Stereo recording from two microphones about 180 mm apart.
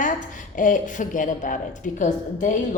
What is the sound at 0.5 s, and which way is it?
A woman's voice, 45° left (ahead or behind).